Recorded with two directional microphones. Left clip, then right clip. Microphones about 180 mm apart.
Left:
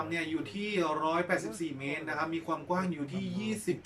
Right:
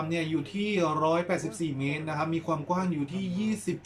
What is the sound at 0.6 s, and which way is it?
A man's voice, 15° right (ahead or behind).